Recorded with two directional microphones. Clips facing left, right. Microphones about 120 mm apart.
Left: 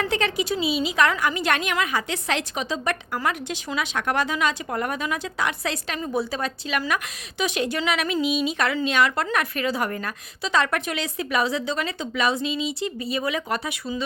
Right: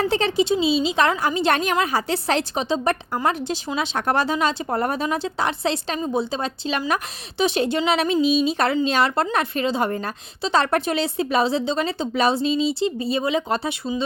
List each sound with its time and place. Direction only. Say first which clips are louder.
0.0 s a woman's voice: right 4 dB; 30° right (ahead or behind)